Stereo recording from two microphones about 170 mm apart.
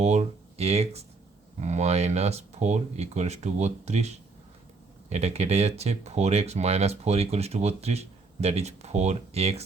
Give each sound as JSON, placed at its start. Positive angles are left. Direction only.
{"t": 0.0, "sound": "speech", "side_deg": -40}